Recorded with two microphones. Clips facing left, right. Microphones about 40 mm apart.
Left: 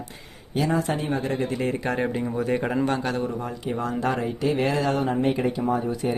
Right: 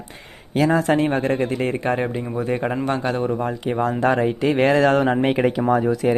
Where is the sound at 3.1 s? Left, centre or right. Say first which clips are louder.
Right 6 dB; right.